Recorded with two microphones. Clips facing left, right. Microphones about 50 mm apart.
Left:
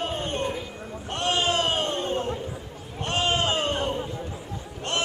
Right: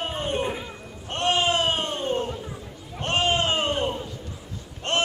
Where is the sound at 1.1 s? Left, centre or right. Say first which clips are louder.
Right 3 dB; right.